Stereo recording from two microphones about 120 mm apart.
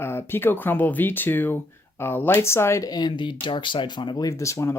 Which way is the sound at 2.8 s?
35° left (ahead or behind).